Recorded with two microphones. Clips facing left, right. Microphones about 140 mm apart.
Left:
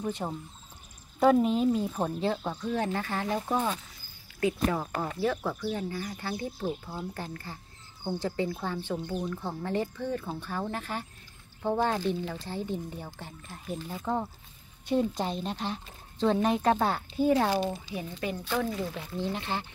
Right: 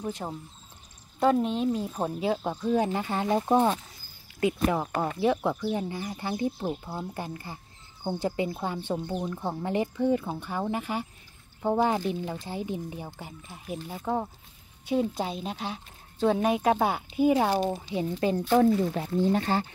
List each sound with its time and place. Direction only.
0.0 s speech: 5° right (ahead or behind)
1.9 s speech: 10° right (ahead or behind); by 18.4 s 25° right (ahead or behind)
18.5 s speech: 40° right (ahead or behind)